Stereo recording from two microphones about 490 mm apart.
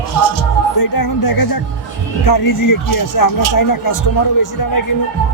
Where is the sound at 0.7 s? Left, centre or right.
Left.